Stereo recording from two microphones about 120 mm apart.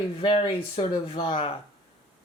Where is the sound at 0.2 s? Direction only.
50° left (ahead or behind).